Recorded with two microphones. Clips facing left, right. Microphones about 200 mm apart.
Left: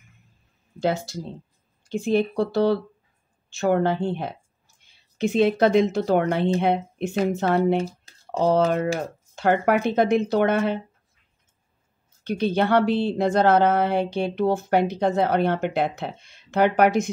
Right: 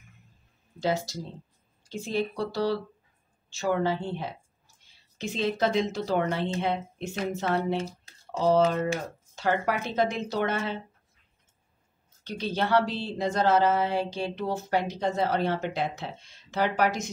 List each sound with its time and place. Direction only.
0.7 s speech: 60° left (ahead or behind)
12.2 s speech: 60° left (ahead or behind)